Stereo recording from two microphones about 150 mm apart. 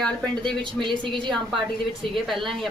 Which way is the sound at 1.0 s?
35° right (ahead or behind).